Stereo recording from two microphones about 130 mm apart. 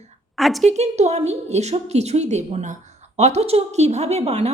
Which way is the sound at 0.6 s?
60° right (ahead or behind).